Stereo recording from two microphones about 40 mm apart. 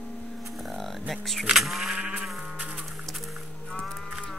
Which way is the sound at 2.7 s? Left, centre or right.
Centre.